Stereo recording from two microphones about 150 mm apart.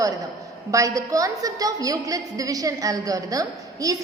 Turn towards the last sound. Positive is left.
turn(degrees=-25)  # may be behind; listen again after turning